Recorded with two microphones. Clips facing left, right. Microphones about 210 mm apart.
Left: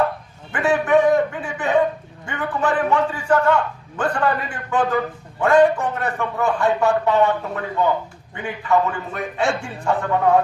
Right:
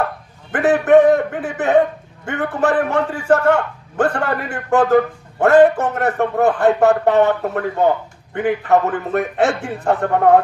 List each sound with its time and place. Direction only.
0.5 s a sound: 60° right (ahead or behind)
2.2 s a man's voice: 65° right (ahead or behind)
4.1 s a man's voice: 45° right (ahead or behind)
4.5 s a man's voice: 75° right (ahead or behind); by 10.4 s 55° right (ahead or behind)